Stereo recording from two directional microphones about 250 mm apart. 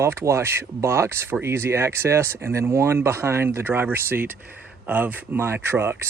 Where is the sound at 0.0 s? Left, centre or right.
Centre.